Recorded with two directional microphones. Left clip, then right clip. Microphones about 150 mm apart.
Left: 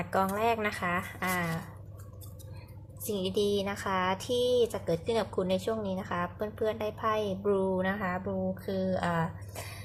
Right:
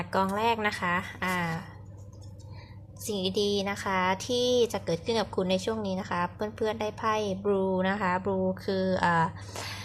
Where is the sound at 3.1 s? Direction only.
Centre (ahead or behind); by 9.3 s 20° right (ahead or behind).